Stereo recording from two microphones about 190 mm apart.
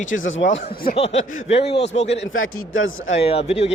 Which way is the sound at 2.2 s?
90° left.